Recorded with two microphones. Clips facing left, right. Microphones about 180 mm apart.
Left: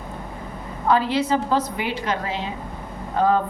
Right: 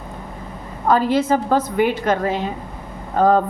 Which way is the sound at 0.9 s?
45° right (ahead or behind).